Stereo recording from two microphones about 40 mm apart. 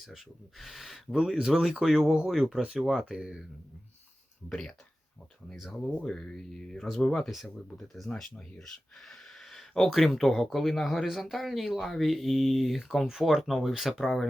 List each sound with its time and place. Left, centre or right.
0.6 s speech: centre
2.0 s speech: right
2.3 s speech: centre
4.4 s speech: centre
5.5 s speech: centre
6.1 s speech: centre
11.0 s speech: centre